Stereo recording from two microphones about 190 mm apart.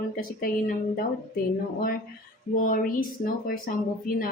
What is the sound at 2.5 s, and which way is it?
Speech, 45° left (ahead or behind).